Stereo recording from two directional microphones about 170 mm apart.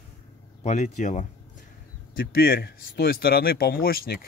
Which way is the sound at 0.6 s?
45° left (ahead or behind).